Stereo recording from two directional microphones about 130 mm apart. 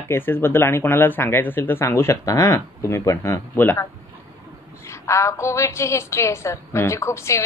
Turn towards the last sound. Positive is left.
turn(degrees=20)  # may be behind; listen again after turning